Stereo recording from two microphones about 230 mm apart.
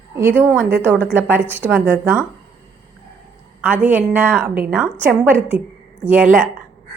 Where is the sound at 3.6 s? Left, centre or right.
Centre.